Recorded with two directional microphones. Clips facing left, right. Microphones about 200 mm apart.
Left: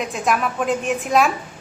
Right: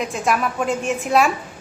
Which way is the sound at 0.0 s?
Centre (ahead or behind).